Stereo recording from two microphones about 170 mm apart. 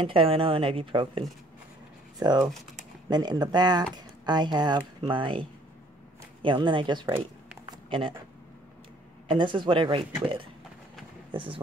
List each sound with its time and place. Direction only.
0.0 s speech: 30° right (ahead or behind)
7.7 s a sound: 30° right (ahead or behind)
9.3 s speech: 30° right (ahead or behind)